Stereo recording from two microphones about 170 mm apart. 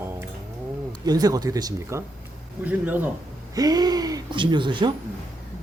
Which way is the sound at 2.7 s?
10° right (ahead or behind).